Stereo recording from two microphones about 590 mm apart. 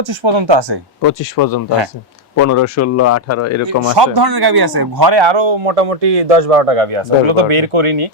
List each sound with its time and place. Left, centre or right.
0.1 s speech: right
1.0 s speech: left
3.9 s speech: right
5.3 s a man's voice: right